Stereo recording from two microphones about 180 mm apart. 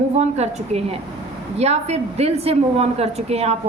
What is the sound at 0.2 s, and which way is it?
A woman's voice, 35° right (ahead or behind).